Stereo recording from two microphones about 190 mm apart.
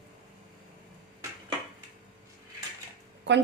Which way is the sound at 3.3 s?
65° right (ahead or behind).